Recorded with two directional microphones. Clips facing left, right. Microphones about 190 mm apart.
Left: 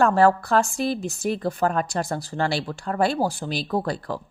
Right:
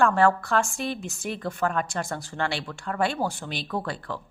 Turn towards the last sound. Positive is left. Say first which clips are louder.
# left 5 dB
turn(degrees=35)  # may be behind; listen again after turning